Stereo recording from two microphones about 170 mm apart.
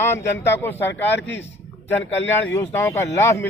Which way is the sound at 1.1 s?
90° left.